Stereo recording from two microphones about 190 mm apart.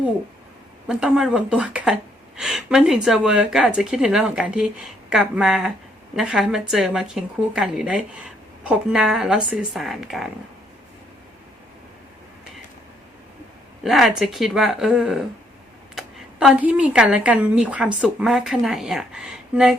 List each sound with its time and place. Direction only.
0.9 s speech: 5° right (ahead or behind)
13.8 s speech: centre (ahead or behind)